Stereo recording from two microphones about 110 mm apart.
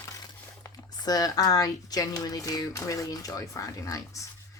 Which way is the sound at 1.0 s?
35° left (ahead or behind).